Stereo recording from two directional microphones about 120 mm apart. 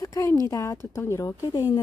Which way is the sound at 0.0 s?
25° left (ahead or behind).